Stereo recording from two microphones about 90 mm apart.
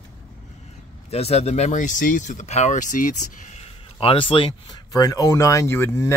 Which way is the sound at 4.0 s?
80° left.